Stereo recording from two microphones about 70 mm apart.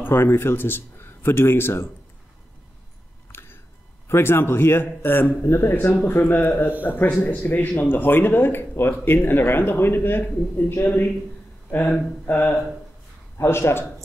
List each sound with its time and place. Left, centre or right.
0.0 s speech: left
3.3 s a sound: left
4.1 s a man's voice: left
13.4 s a man's voice: left